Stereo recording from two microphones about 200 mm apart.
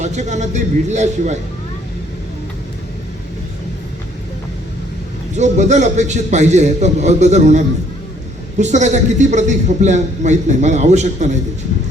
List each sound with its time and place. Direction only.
0.0 s a man's voice: 35° right (ahead or behind)
5.3 s a man's voice: 35° right (ahead or behind)